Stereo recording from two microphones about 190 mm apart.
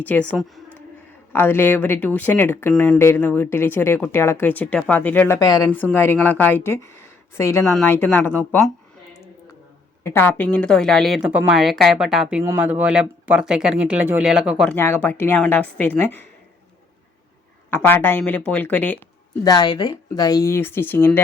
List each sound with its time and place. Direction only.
0.0 s speech: 5° left (ahead or behind)
10.0 s speech: 15° left (ahead or behind); by 14.7 s 5° right (ahead or behind)
14.7 s speech: 10° left (ahead or behind)
17.7 s speech: 10° left (ahead or behind)
19.5 s speech: 20° left (ahead or behind)